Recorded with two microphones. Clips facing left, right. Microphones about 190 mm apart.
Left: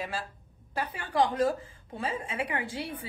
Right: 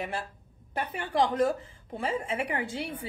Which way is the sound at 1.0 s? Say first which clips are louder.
Right 1 dB; 25° right (ahead or behind).